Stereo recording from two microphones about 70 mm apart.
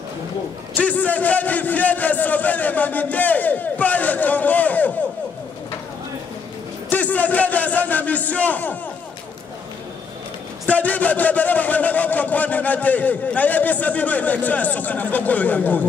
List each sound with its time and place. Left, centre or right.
0.7 s a man's voice: left
6.9 s a man's voice: left
10.7 s a man's voice: left